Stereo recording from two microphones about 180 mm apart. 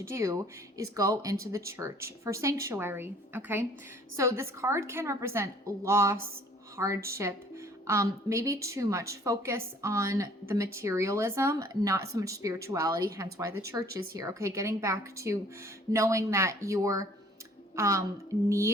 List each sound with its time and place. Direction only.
0.1 s speech: 15° right (ahead or behind)